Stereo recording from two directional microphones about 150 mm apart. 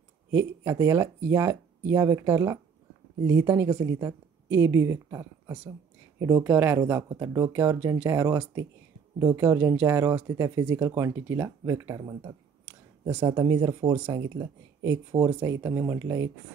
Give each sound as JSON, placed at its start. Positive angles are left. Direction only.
{"t": 0.3, "sound": "speech", "side_deg": -20}
{"t": 13.0, "sound": "speech", "side_deg": -15}
{"t": 13.3, "sound": "speech", "side_deg": -30}